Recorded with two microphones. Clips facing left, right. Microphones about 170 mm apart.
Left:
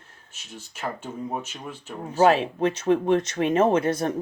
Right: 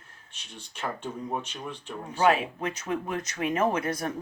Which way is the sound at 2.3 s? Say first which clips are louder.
Left 6 dB; 30° left (ahead or behind).